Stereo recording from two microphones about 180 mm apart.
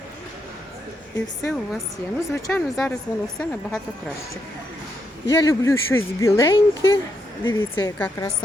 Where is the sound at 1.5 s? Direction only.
Centre (ahead or behind).